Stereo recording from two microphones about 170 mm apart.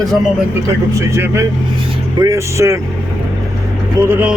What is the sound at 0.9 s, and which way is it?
Speech, 20° right (ahead or behind).